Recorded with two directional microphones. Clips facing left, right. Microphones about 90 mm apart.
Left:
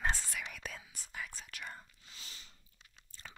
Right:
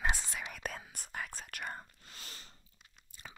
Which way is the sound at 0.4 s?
45° right (ahead or behind).